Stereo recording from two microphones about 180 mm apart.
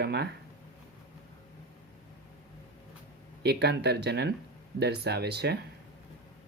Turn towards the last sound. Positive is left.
turn(degrees=-65)  # may be behind; listen again after turning